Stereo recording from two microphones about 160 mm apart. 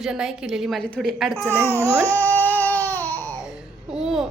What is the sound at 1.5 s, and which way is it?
Speech, 15° right (ahead or behind).